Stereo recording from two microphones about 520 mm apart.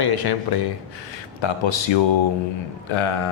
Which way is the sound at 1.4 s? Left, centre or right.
Left.